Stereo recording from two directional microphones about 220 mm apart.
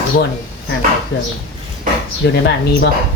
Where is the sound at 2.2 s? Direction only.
50° left (ahead or behind).